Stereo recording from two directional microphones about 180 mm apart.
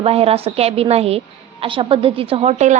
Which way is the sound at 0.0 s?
35° right (ahead or behind).